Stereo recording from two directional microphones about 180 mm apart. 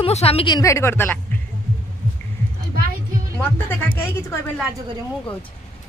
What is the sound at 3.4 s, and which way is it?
A woman's voice, 10° left (ahead or behind).